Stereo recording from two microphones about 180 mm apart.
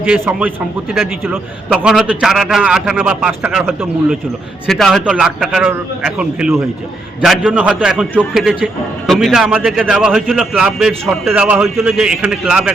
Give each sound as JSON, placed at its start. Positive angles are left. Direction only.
{"t": 0.0, "sound": "a man's voice", "side_deg": -5}
{"t": 4.6, "sound": "a man's voice", "side_deg": 0}